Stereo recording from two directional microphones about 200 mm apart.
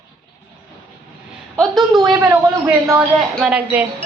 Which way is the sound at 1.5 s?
Centre (ahead or behind).